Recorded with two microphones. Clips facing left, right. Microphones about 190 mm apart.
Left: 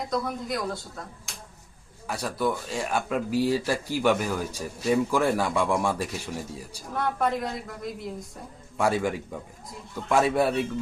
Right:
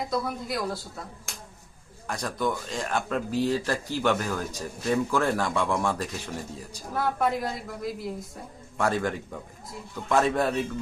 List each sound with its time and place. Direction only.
0.0 s a woman's voice: 5° right (ahead or behind)
2.0 s speech: 5° left (ahead or behind)
6.9 s a woman's voice: 5° right (ahead or behind)
8.8 s speech: 10° left (ahead or behind)